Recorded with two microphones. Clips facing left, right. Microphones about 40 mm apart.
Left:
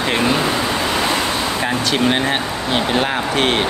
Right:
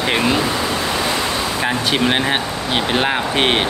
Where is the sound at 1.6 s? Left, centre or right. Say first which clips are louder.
Right 1 dB; centre.